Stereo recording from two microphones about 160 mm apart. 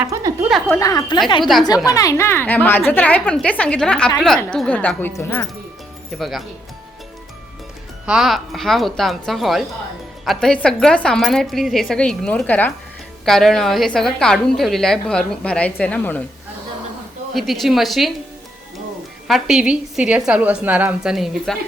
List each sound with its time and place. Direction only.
0.1 s speech: 20° right (ahead or behind)
0.7 s a woman's voice: 20° left (ahead or behind)
6.1 s a woman's voice: centre (ahead or behind)
8.0 s a woman's voice: 5° right (ahead or behind)
17.3 s a woman's voice: centre (ahead or behind)
19.3 s a woman's voice: 5° right (ahead or behind)